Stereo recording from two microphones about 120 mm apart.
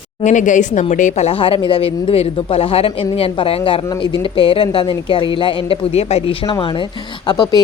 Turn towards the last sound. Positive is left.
turn(degrees=40)  # may be behind; listen again after turning